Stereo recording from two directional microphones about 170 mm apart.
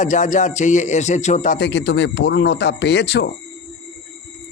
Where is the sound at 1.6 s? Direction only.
90° left.